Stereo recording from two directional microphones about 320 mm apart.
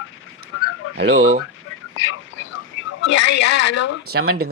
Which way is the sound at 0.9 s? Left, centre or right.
Right.